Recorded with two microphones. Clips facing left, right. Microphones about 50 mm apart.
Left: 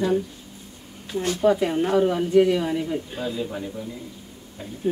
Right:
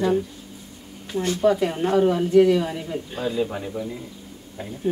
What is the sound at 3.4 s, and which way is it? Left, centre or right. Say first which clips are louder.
Speech: right 4 dB; centre.